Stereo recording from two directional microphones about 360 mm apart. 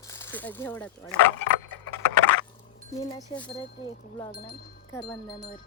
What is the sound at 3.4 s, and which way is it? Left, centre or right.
Speech, centre.